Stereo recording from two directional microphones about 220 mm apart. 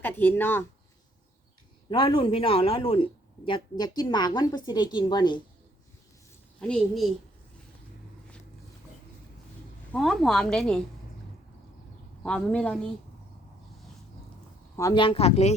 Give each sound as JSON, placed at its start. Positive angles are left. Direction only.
{"t": 0.0, "sound": "a woman's voice", "side_deg": 10}
{"t": 1.9, "sound": "speech", "side_deg": 20}
{"t": 6.6, "sound": "a woman's voice", "side_deg": 5}
{"t": 9.9, "sound": "a woman's voice", "side_deg": 0}
{"t": 12.2, "sound": "a woman's voice", "side_deg": 5}
{"t": 14.8, "sound": "speech", "side_deg": 20}